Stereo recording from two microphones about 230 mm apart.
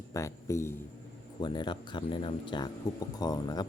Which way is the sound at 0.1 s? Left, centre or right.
Centre.